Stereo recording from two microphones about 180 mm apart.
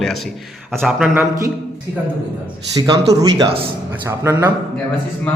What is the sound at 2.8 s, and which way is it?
A man's voice, 25° right (ahead or behind).